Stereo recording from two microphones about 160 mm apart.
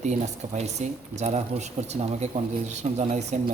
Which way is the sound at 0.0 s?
45° right (ahead or behind).